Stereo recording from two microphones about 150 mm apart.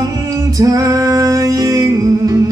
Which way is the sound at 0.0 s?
25° right (ahead or behind).